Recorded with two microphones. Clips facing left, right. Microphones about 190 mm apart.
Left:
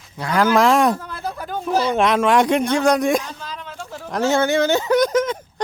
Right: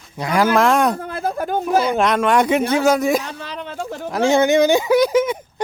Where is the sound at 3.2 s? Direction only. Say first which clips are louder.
Right 4 dB; 65° right (ahead or behind).